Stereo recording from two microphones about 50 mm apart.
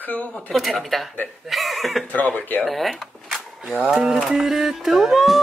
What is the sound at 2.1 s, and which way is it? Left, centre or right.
Speech, left.